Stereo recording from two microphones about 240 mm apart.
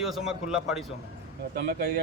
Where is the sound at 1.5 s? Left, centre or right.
Right.